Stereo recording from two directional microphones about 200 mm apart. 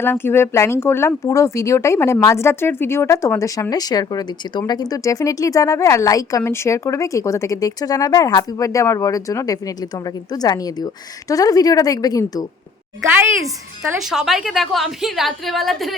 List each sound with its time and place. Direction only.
0.0 s speech: 10° left (ahead or behind)
13.1 s a woman's voice: 5° right (ahead or behind)